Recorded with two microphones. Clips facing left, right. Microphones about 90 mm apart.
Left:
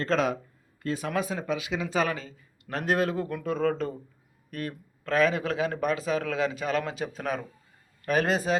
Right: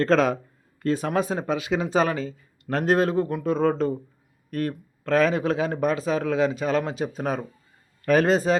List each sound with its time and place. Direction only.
0.0 s speech: 40° right (ahead or behind); by 7.4 s 25° right (ahead or behind)
8.0 s speech: 35° right (ahead or behind)